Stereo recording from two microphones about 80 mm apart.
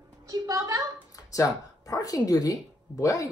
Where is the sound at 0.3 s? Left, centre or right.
Right.